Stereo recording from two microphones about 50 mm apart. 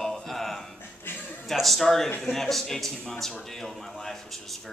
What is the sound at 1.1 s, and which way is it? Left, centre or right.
Speech, left.